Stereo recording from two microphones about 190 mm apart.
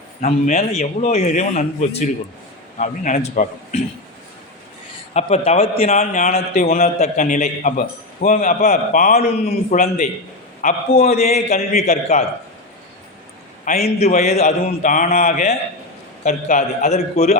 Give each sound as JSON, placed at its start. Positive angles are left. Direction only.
{"t": 0.2, "sound": "a man's voice", "side_deg": 35}
{"t": 5.1, "sound": "a man's voice", "side_deg": 35}
{"t": 13.7, "sound": "a man's voice", "side_deg": 35}